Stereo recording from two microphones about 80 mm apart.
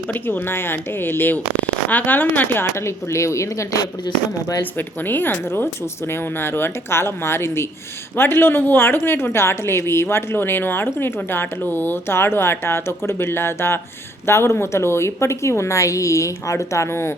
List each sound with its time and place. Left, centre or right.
0.1 s a woman's voice: left
4.8 s a woman's voice: left